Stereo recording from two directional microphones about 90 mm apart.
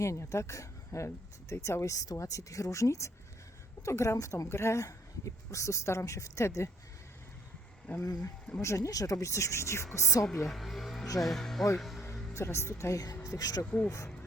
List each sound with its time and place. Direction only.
0.0 s speech: 35° left (ahead or behind)
8.0 s speech: 45° left (ahead or behind)
10.2 s speech: 5° left (ahead or behind)
11.8 s music: centre (ahead or behind)
12.3 s speech: 30° left (ahead or behind)
13.7 s speech: 15° left (ahead or behind)